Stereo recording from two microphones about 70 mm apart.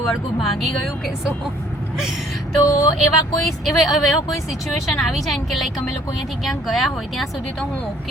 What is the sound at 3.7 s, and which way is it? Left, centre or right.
A woman's voice, centre.